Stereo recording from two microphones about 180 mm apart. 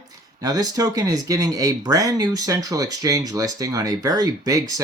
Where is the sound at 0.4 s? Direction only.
20° right (ahead or behind).